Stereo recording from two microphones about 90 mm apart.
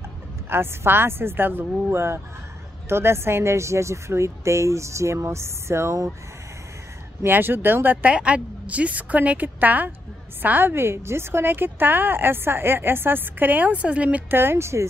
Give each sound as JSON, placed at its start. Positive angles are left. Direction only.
{"t": 0.5, "sound": "a woman's voice", "side_deg": -25}
{"t": 7.2, "sound": "a woman's voice", "side_deg": -25}